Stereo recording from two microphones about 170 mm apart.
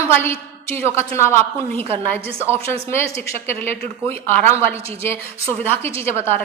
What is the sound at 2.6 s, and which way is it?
Speech, 35° right (ahead or behind).